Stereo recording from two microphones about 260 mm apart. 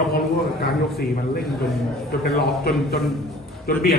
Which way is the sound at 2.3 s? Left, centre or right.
Left.